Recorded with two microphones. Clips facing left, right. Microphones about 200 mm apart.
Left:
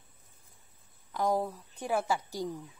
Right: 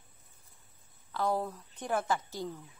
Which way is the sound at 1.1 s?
15° left (ahead or behind).